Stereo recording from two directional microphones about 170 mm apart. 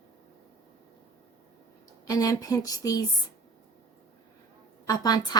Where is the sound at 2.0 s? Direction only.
20° left (ahead or behind).